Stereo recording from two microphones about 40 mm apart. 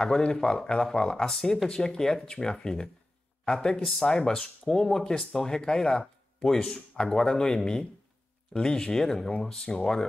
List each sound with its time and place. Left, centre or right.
0.0 s speech: centre